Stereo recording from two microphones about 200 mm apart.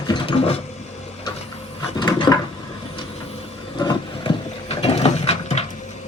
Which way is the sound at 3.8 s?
20° left (ahead or behind).